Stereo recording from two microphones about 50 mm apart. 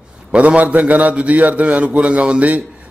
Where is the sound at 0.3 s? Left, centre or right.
Right.